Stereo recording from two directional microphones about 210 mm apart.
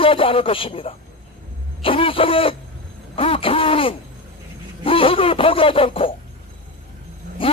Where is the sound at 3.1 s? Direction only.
25° left (ahead or behind).